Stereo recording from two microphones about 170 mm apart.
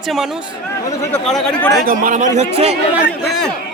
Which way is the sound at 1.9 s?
50° right (ahead or behind).